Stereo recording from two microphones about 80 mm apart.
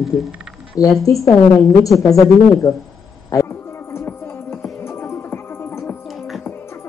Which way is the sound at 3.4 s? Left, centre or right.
Left.